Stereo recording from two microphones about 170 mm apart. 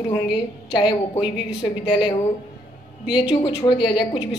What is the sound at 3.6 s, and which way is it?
Speech, 30° left (ahead or behind).